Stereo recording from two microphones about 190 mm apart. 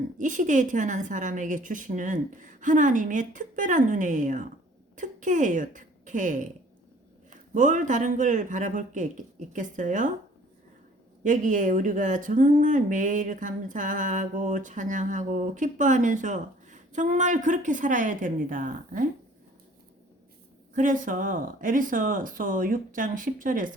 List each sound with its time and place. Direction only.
0.2 s a woman's voice: 40° right (ahead or behind)
11.2 s a woman's voice: 45° right (ahead or behind)
20.7 s a woman's voice: 45° right (ahead or behind)